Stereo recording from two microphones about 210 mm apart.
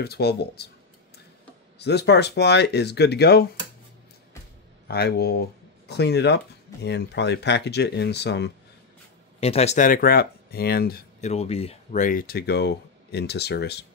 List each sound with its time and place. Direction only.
0.0 s speech: 50° left (ahead or behind)
1.8 s speech: 55° left (ahead or behind)
4.8 s speech: 50° left (ahead or behind)
9.4 s speech: 30° left (ahead or behind); by 11.0 s 50° left (ahead or behind)
11.1 s speech: 30° left (ahead or behind); by 13.8 s 50° left (ahead or behind)